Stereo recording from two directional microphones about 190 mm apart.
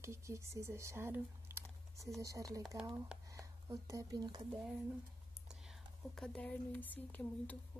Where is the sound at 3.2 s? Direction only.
20° right (ahead or behind).